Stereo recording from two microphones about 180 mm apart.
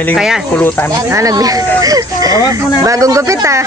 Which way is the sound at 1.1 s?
20° right (ahead or behind).